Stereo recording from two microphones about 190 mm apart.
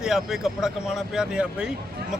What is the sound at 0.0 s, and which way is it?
Speech, centre (ahead or behind).